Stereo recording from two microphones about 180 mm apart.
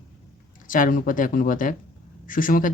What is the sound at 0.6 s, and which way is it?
Speech, 50° left (ahead or behind).